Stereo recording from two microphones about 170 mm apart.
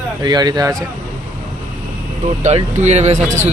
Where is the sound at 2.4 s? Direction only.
40° right (ahead or behind).